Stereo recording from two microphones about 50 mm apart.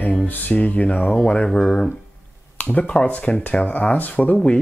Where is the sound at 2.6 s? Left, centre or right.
Left.